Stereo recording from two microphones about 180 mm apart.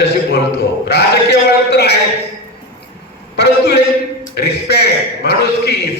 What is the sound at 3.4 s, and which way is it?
A man's voice, 65° left (ahead or behind).